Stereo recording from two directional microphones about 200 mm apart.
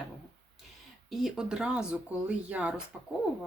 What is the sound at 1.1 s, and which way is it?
Speech, centre (ahead or behind).